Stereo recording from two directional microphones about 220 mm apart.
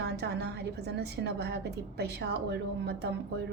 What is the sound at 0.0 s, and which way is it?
A woman's voice, 50° right (ahead or behind).